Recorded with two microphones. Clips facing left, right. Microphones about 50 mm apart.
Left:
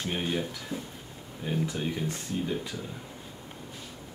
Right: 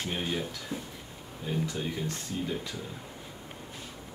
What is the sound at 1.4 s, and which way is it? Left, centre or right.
Speech, centre.